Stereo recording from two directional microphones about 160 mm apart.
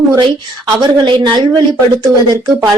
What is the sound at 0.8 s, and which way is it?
Speech, 30° right (ahead or behind).